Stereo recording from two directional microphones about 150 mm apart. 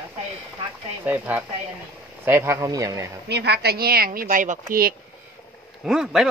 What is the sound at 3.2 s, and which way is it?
Speech, 90° right.